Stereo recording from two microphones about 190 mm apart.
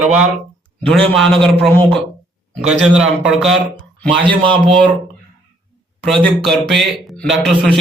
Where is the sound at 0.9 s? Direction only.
Centre (ahead or behind).